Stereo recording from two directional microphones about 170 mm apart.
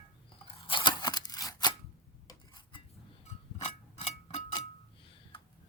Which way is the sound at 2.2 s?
25° left (ahead or behind).